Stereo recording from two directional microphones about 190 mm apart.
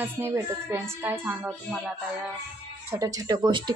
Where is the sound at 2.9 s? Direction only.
20° right (ahead or behind).